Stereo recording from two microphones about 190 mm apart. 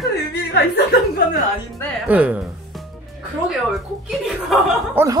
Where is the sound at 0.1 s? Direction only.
60° left (ahead or behind).